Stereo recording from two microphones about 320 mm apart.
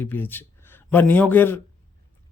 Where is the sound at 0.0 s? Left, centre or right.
Centre.